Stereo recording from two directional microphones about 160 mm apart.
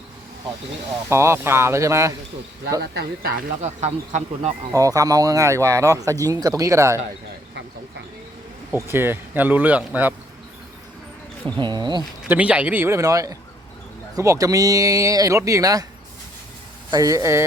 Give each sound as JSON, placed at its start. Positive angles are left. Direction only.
{"t": 1.1, "sound": "a man's voice", "side_deg": -15}
{"t": 2.9, "sound": "speech", "side_deg": -80}
{"t": 3.6, "sound": "speech", "side_deg": -45}
{"t": 4.7, "sound": "speech", "side_deg": -20}
{"t": 8.7, "sound": "a man's voice", "side_deg": -15}
{"t": 11.5, "sound": "speech", "side_deg": -30}
{"t": 12.3, "sound": "a man's voice", "side_deg": -10}
{"t": 16.9, "sound": "speech", "side_deg": -20}